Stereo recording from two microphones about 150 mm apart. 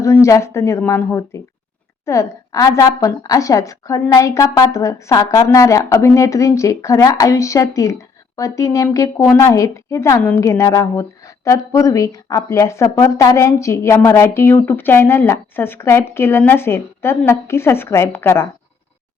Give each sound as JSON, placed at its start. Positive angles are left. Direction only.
{"t": 0.0, "sound": "a woman's voice", "side_deg": 20}